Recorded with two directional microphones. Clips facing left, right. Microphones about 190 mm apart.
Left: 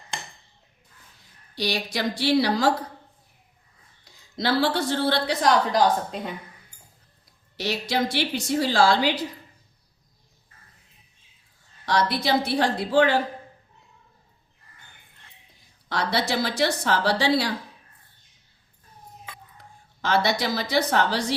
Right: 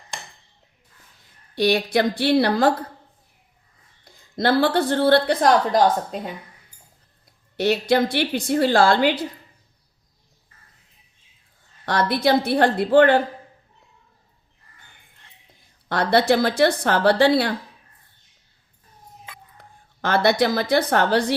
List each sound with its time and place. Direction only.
1.5 s a woman's voice: 55° right (ahead or behind)
4.0 s a woman's voice: 50° right (ahead or behind)
7.5 s a woman's voice: 55° right (ahead or behind)
11.9 s a woman's voice: 55° right (ahead or behind)
15.9 s a woman's voice: 55° right (ahead or behind)
20.0 s a woman's voice: 55° right (ahead or behind)